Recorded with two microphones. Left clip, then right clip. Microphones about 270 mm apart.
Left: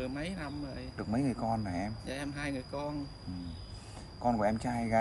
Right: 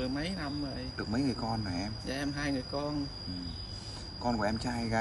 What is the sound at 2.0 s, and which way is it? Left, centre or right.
Speech, centre.